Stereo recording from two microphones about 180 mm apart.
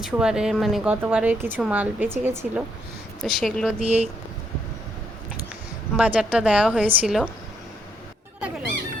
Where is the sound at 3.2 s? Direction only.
Centre (ahead or behind).